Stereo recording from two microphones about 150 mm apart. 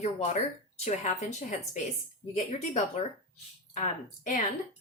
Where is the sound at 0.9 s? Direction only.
50° left (ahead or behind).